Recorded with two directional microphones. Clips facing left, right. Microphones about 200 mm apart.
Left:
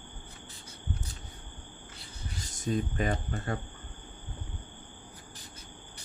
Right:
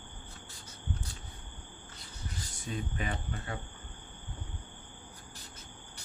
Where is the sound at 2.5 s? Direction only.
40° left (ahead or behind).